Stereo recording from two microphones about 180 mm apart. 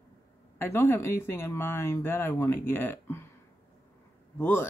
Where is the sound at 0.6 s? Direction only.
10° left (ahead or behind).